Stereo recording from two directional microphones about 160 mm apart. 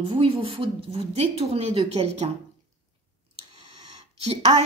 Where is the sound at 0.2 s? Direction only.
35° right (ahead or behind).